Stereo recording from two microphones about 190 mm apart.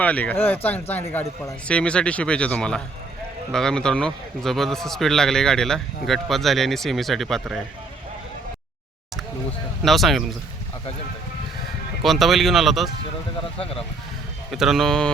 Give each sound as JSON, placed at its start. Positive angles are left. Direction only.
{"t": 0.0, "sound": "a man's voice", "side_deg": 10}
{"t": 9.8, "sound": "a man's voice", "side_deg": 0}
{"t": 12.0, "sound": "a man's voice", "side_deg": 0}
{"t": 13.6, "sound": "speech", "side_deg": 30}
{"t": 14.5, "sound": "a man's voice", "side_deg": 0}